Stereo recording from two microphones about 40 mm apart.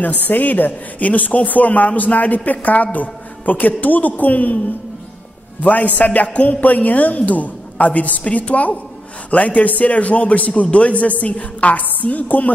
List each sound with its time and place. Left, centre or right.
0.3 s speech: left
5.6 s a woman's voice: left